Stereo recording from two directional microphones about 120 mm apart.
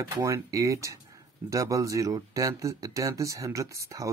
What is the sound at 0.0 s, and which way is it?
Speech, 25° right (ahead or behind).